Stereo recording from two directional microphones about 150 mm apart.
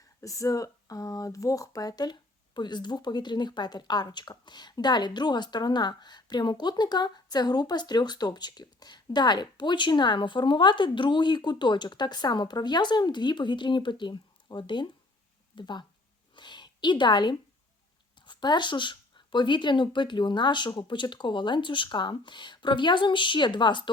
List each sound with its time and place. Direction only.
0.2 s speech: 20° left (ahead or behind)
16.3 s a sound: 30° left (ahead or behind)
18.3 s speech: 30° left (ahead or behind)